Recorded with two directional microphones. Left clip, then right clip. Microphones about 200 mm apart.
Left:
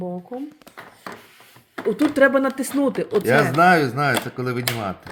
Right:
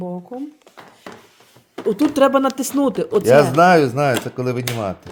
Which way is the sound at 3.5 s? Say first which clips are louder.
Right 3 dB; 35° right (ahead or behind).